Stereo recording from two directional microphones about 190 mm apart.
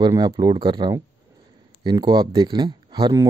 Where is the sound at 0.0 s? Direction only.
20° right (ahead or behind).